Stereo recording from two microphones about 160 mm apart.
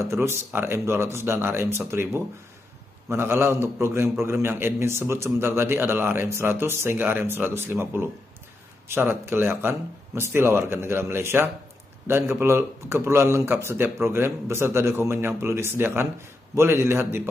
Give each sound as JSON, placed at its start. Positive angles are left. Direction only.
{"t": 0.0, "sound": "a man's voice", "side_deg": -15}